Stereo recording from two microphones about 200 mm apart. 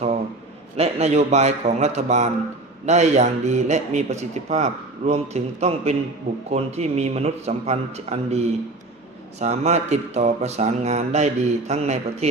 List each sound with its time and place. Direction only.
0.8 s a man's voice: 30° right (ahead or behind)